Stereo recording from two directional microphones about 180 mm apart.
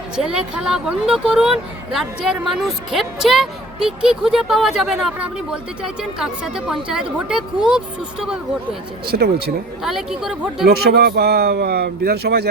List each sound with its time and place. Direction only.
0.3 s speech: 5° right (ahead or behind)
9.0 s speech: 60° right (ahead or behind)
9.8 s speech: centre (ahead or behind)
10.7 s speech: 60° right (ahead or behind)